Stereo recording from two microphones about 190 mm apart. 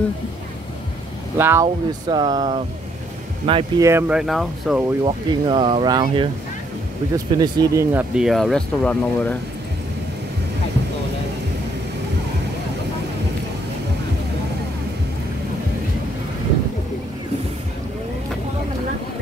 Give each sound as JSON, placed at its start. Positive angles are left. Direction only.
{"t": 1.4, "sound": "speech", "side_deg": -15}
{"t": 3.8, "sound": "speech", "side_deg": -10}
{"t": 5.0, "sound": "speech", "side_deg": -25}